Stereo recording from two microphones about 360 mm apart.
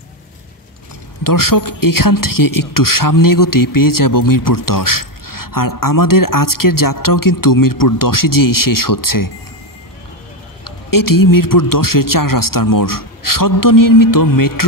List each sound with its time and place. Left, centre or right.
1.2 s speech: left
10.6 s speech: left